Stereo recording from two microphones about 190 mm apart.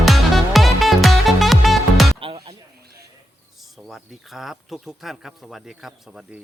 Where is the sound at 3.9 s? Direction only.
Centre (ahead or behind).